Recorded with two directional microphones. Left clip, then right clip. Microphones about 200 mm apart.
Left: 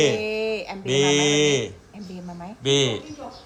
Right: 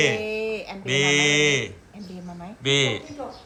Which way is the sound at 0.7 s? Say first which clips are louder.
Even; 15° left (ahead or behind).